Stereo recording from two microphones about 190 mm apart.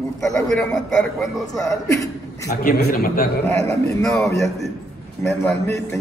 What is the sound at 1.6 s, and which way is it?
Speech, 15° left (ahead or behind).